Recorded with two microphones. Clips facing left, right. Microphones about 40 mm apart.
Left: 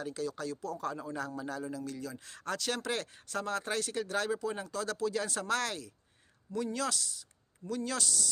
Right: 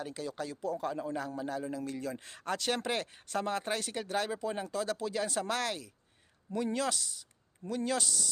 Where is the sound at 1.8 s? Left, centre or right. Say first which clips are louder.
Right 3 dB; right.